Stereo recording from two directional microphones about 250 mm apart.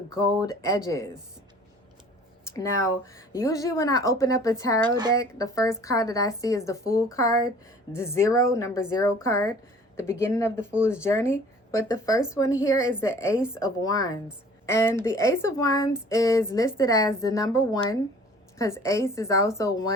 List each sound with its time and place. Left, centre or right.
0.3 s speech: centre
2.5 s speech: centre
4.9 s speech: centre
5.1 s speech: centre